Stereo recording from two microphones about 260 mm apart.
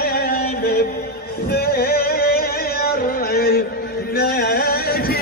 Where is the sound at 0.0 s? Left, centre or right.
Left.